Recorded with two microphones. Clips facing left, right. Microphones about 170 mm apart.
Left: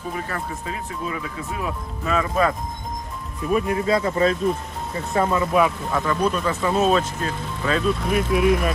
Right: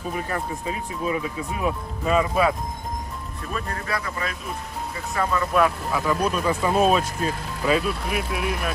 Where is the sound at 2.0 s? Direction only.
10° right (ahead or behind).